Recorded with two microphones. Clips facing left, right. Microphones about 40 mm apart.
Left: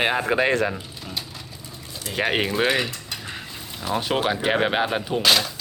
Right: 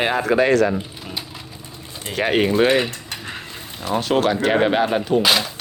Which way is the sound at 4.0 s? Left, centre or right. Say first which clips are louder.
Right 5 dB; centre.